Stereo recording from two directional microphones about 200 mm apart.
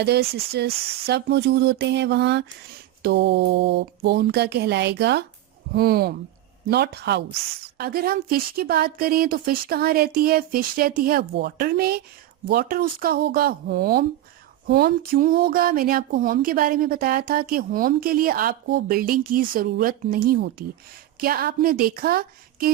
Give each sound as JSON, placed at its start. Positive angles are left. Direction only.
{"t": 0.0, "sound": "speech", "side_deg": -55}
{"t": 0.7, "sound": "speech", "side_deg": -30}
{"t": 1.0, "sound": "speech", "side_deg": -55}